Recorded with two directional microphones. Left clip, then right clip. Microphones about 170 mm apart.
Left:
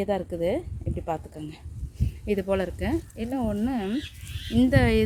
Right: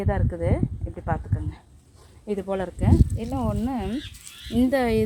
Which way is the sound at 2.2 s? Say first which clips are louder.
Left 2 dB; 15° left (ahead or behind).